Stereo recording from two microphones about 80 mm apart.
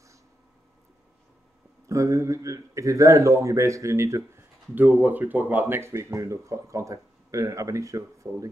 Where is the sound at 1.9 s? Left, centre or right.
Right.